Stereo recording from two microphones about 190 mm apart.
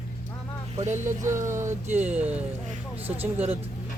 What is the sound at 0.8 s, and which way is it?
Speech, 40° right (ahead or behind).